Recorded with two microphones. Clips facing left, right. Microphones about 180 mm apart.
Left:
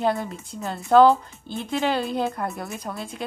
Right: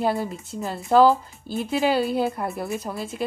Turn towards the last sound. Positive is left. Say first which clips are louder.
# right 4 dB
turn(degrees=-5)  # may be behind; listen again after turning